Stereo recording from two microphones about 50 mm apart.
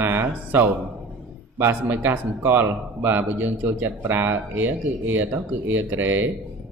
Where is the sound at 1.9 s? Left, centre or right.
Right.